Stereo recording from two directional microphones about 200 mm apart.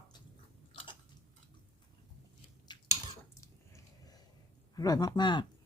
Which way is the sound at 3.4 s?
15° left (ahead or behind).